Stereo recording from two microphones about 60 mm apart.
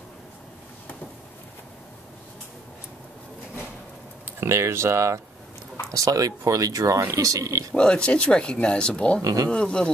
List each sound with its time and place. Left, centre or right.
4.4 s speech: right
5.9 s speech: right
7.7 s speech: centre
9.2 s speech: right
9.5 s speech: centre